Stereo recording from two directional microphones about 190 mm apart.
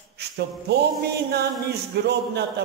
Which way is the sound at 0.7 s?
55° right (ahead or behind).